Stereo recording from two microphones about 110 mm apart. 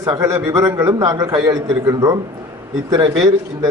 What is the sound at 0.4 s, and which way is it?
A man's voice, 30° right (ahead or behind).